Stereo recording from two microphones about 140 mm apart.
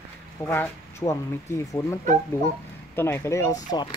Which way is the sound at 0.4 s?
15° left (ahead or behind).